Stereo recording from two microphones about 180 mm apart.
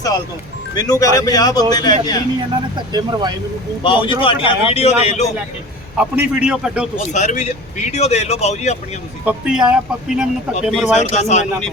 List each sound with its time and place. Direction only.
0.8 s a man's voice: 20° left (ahead or behind)
2.7 s speech: 25° right (ahead or behind)
3.8 s speech: 30° left (ahead or behind)
6.0 s speech: 5° right (ahead or behind)
7.1 s speech: 40° left (ahead or behind)
9.2 s speech: 5° right (ahead or behind)
11.1 s speech: 40° left (ahead or behind)